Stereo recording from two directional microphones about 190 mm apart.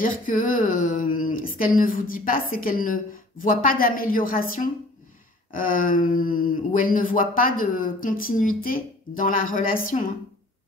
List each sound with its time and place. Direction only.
0.0 s speech: 45° left (ahead or behind)